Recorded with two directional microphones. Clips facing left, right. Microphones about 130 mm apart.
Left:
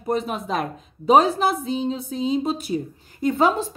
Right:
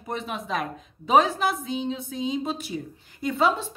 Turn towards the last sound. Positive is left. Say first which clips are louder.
# left 4 dB
turn(degrees=45)  # may be behind; listen again after turning